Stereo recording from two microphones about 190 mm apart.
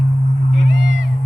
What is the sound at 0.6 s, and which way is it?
Music, 70° right (ahead or behind).